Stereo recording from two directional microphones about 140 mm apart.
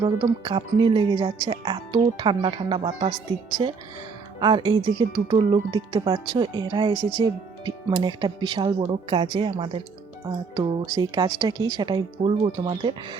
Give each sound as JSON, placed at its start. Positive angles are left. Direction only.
{"t": 0.0, "sound": "speech", "side_deg": -35}